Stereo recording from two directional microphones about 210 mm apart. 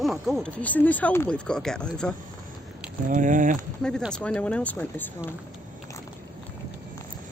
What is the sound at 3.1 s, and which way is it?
Speech, 40° right (ahead or behind).